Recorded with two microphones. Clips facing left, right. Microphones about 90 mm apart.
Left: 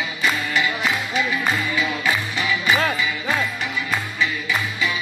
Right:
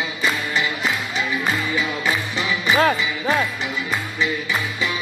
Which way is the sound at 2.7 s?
35° right (ahead or behind).